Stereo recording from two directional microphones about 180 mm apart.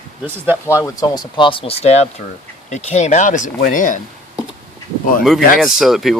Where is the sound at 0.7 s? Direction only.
20° left (ahead or behind); by 4.0 s 45° left (ahead or behind).